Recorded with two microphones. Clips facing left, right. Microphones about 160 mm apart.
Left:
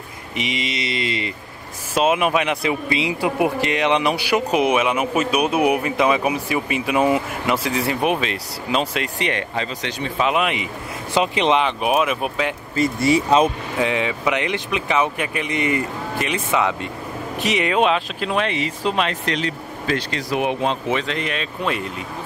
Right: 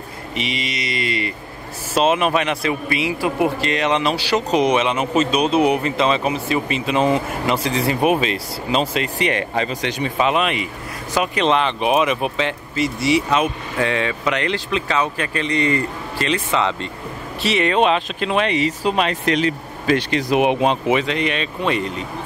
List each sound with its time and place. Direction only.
0.4 s speech: 20° left (ahead or behind)
2.0 s speech: 10° left (ahead or behind)
10.3 s speech: 15° left (ahead or behind)
13.7 s speech: 15° left (ahead or behind); by 19.3 s 5° right (ahead or behind)
19.3 s speech: 15° right (ahead or behind)
21.0 s speech: centre (ahead or behind)